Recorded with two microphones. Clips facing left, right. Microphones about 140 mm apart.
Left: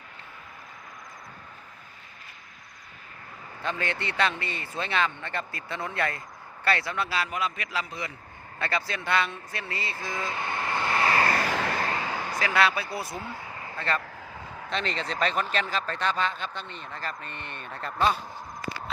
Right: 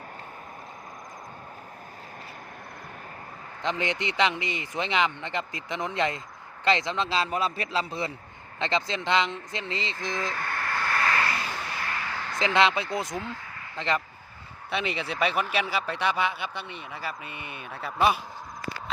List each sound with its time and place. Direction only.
3.6 s speech: 20° right (ahead or behind)
10.2 s vehicle: 20° left (ahead or behind)
11.3 s vehicle: 70° left (ahead or behind)
11.9 s a sound: 25° left (ahead or behind)
12.1 s a sound: 15° left (ahead or behind)
12.4 s speech: 20° right (ahead or behind)